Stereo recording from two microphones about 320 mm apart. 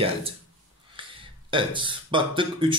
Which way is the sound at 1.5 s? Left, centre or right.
Centre.